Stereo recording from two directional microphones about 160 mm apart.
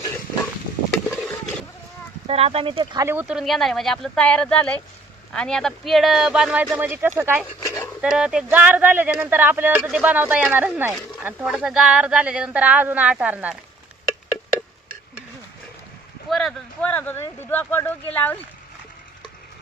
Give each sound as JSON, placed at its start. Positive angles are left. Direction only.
{"t": 2.2, "sound": "speech", "side_deg": -35}
{"t": 3.1, "sound": "speech", "side_deg": -10}
{"t": 7.6, "sound": "dog", "side_deg": 15}
{"t": 8.0, "sound": "speech", "side_deg": -5}
{"t": 16.3, "sound": "speech", "side_deg": 5}